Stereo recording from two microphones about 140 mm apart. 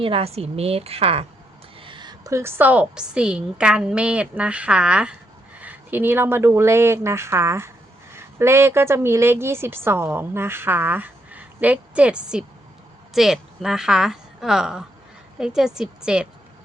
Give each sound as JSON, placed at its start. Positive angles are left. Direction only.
{"t": 0.0, "sound": "a woman's voice", "side_deg": -45}